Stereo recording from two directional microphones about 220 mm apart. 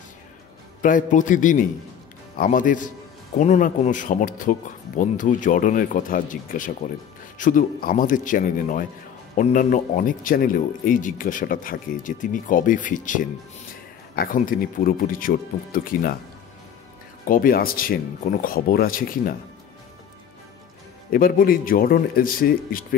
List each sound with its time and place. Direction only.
0.8 s speech: 35° left (ahead or behind)
17.2 s speech: 40° left (ahead or behind)
21.1 s speech: 40° left (ahead or behind)